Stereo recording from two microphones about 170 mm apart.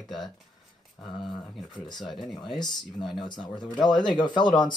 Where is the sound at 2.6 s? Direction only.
25° left (ahead or behind).